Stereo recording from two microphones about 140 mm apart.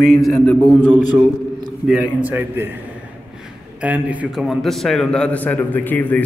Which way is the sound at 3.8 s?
10° right (ahead or behind).